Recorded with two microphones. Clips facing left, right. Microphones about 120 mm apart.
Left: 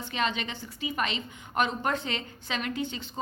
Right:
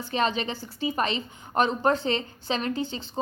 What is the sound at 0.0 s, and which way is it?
A woman's voice, 35° right (ahead or behind).